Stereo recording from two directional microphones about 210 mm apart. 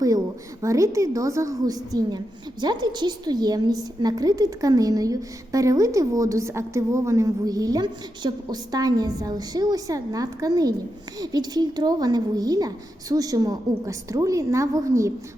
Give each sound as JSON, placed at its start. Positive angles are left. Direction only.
{"t": 0.6, "sound": "a woman's voice", "side_deg": -15}